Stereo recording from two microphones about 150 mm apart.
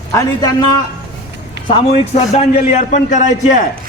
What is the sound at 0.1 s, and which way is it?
Speech, 20° left (ahead or behind).